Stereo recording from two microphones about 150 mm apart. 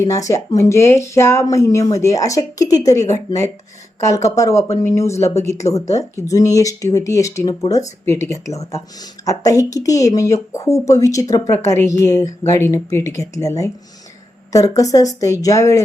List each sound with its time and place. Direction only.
0.0 s speech: 20° left (ahead or behind)